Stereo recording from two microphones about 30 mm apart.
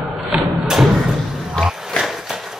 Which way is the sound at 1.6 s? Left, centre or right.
Left.